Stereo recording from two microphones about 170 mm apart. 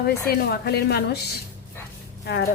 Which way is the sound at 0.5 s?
70° left (ahead or behind).